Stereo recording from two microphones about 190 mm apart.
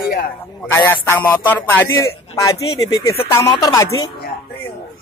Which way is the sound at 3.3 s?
20° left (ahead or behind).